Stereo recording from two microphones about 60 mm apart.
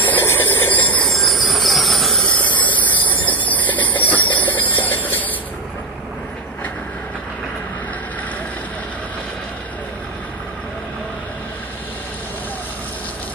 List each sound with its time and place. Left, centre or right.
0.2 s steam: left
1.0 s train: centre
2.2 s steam: left